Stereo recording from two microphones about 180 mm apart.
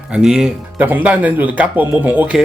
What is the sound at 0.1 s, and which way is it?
Speech, 5° right (ahead or behind).